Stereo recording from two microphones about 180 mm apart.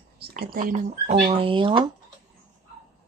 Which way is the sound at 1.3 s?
30° right (ahead or behind).